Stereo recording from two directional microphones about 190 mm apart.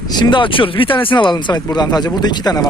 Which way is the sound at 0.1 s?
25° left (ahead or behind).